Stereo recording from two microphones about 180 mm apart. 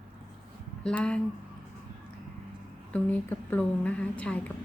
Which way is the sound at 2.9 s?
10° left (ahead or behind).